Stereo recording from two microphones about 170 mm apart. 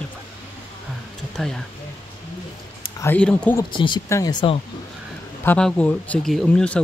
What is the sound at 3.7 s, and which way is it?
Speech, 30° left (ahead or behind).